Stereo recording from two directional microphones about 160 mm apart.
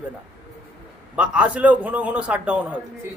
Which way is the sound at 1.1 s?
5° right (ahead or behind).